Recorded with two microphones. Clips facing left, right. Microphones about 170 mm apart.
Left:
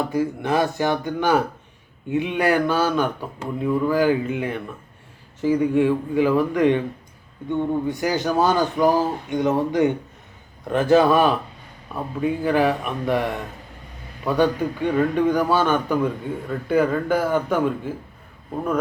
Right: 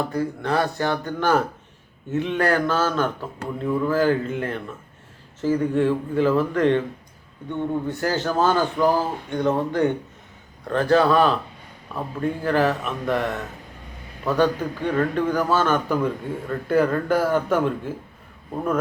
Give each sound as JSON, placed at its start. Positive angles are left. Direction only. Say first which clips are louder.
{"t": 0.0, "sound": "speech", "louder": "left 2 dB", "side_deg": 15}
{"t": 11.9, "sound": "speech", "louder": "left 2 dB", "side_deg": 5}
{"t": 15.7, "sound": "a man's voice", "louder": "left 1 dB", "side_deg": 0}